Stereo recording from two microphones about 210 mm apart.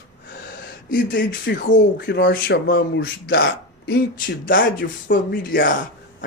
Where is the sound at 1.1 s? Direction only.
60° left (ahead or behind).